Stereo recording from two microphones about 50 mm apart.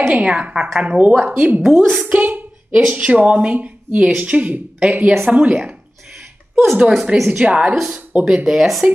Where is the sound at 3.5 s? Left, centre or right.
Right.